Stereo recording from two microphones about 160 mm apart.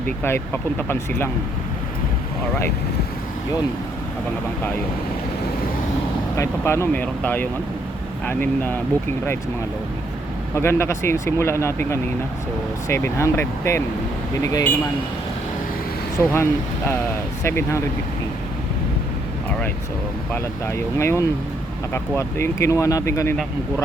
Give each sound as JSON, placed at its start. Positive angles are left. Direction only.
{"t": 0.2, "sound": "speech", "side_deg": 15}
{"t": 6.3, "sound": "speech", "side_deg": 20}
{"t": 10.5, "sound": "speech", "side_deg": 15}
{"t": 16.1, "sound": "speech", "side_deg": 15}
{"t": 20.3, "sound": "speech", "side_deg": 15}